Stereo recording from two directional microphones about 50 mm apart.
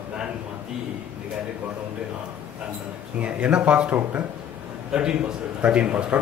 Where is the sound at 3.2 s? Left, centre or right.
Right.